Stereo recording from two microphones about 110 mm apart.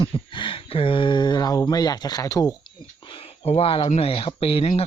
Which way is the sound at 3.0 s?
55° left (ahead or behind).